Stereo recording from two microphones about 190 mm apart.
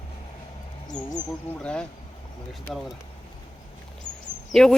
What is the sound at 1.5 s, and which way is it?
Speech, 5° left (ahead or behind).